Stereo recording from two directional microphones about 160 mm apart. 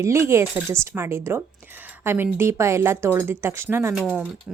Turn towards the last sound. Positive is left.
turn(degrees=0)  # may be behind; listen again after turning